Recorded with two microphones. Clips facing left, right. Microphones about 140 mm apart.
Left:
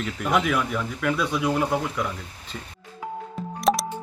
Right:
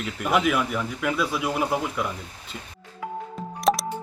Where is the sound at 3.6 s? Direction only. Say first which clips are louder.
Even; centre (ahead or behind).